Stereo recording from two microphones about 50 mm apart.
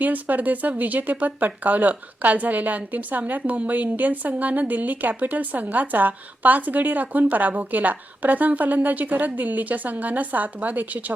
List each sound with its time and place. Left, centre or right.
0.0 s speech: right